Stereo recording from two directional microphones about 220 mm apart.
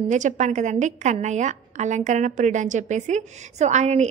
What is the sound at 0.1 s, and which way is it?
A woman's voice, 35° right (ahead or behind).